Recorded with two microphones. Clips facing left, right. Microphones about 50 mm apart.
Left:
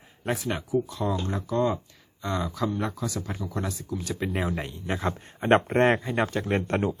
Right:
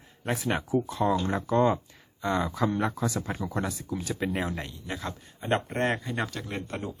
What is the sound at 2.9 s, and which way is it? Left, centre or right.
Speech, right.